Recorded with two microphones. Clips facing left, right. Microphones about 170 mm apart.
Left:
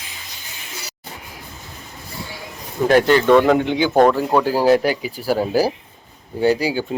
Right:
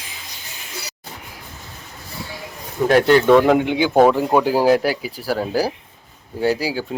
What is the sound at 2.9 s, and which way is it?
Speech, centre (ahead or behind).